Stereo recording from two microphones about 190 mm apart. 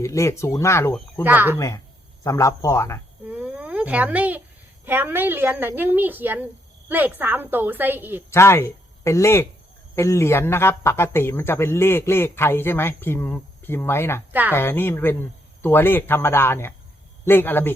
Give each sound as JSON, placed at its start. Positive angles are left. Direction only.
{"t": 0.0, "sound": "speech", "side_deg": 15}
{"t": 1.2, "sound": "a woman's voice", "side_deg": -10}
{"t": 1.5, "sound": "speech", "side_deg": 15}
{"t": 3.2, "sound": "a sound", "side_deg": -10}
{"t": 4.9, "sound": "a woman's voice", "side_deg": -10}
{"t": 8.3, "sound": "speech", "side_deg": 15}